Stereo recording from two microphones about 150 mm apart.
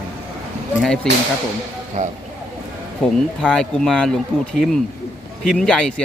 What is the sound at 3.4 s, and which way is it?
Speech, 5° left (ahead or behind).